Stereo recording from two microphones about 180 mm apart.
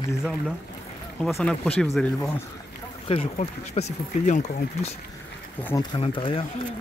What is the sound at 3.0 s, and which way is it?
Speech, 35° left (ahead or behind).